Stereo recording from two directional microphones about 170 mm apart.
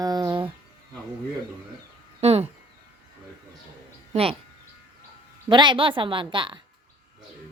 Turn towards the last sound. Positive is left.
turn(degrees=-30)  # may be behind; listen again after turning